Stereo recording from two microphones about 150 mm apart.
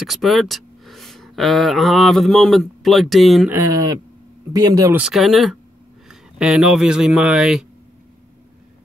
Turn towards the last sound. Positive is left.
turn(degrees=-5)  # may be behind; listen again after turning